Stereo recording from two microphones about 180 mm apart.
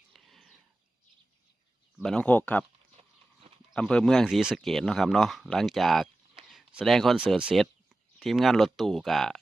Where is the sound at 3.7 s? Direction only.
5° left (ahead or behind).